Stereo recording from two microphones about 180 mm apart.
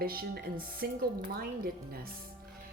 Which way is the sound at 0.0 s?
55° right (ahead or behind).